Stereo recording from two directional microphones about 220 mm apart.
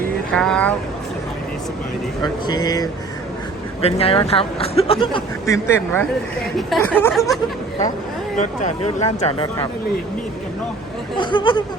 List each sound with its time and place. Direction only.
0.3 s speech: 5° left (ahead or behind)
2.2 s speech: 20° left (ahead or behind)
3.8 s speech: 25° left (ahead or behind); by 7.3 s 10° left (ahead or behind)
8.4 s speech: 30° left (ahead or behind)
11.2 s speech: 20° left (ahead or behind)